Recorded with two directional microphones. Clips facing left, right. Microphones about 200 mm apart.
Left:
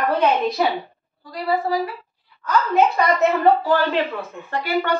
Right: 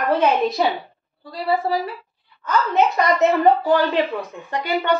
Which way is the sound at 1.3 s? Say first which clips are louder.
Right 1 dB; 25° right (ahead or behind).